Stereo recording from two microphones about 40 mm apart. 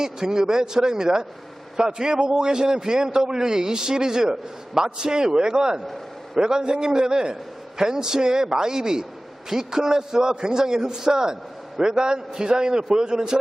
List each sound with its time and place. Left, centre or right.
0.0 s a man's voice: centre